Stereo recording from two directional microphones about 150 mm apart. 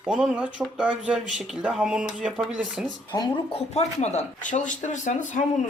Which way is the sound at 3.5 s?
45° left (ahead or behind).